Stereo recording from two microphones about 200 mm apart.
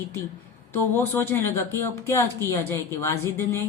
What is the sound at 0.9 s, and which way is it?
A woman's voice, 10° left (ahead or behind).